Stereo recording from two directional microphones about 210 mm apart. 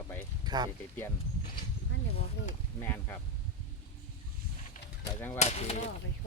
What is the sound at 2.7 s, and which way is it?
Speech, 10° left (ahead or behind).